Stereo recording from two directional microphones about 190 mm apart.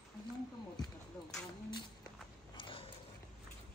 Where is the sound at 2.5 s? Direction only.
25° left (ahead or behind).